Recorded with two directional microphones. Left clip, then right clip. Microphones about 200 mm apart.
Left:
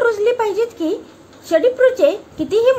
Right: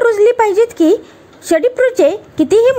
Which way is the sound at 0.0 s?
40° right (ahead or behind).